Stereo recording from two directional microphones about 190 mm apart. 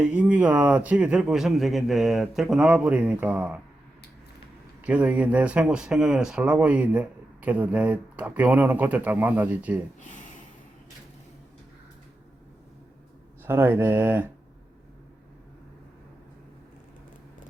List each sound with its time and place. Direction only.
0.0 s speech: 5° right (ahead or behind)
4.8 s speech: 10° right (ahead or behind)
13.4 s speech: 10° right (ahead or behind)